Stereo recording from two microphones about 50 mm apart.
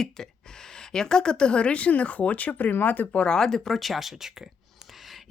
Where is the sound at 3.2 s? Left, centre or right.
Centre.